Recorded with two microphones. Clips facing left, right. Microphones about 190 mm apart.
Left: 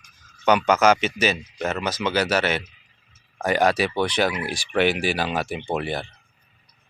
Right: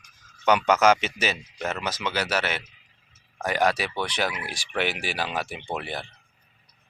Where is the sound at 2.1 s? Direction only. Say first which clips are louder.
Left 6 dB; 5° right (ahead or behind).